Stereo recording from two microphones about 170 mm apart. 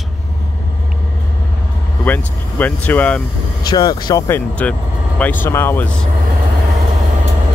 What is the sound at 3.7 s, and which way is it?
Speech, 25° left (ahead or behind).